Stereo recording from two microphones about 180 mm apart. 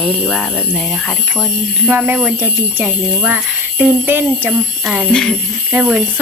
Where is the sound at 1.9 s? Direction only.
10° right (ahead or behind).